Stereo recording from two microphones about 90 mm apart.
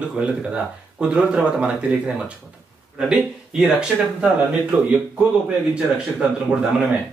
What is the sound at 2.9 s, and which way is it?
Speech, 10° right (ahead or behind).